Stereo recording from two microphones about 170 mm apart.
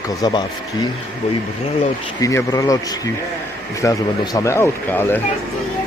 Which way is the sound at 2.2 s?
20° left (ahead or behind).